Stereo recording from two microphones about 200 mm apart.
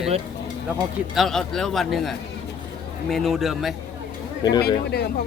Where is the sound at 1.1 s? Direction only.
Centre (ahead or behind).